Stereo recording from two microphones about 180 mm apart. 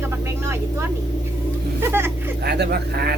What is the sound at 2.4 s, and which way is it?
Speech, 60° right (ahead or behind).